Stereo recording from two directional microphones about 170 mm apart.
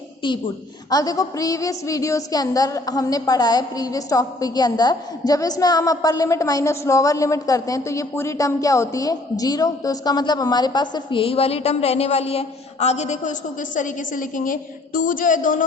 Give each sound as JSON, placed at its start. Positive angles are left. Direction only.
{"t": 0.2, "sound": "a woman's voice", "side_deg": 30}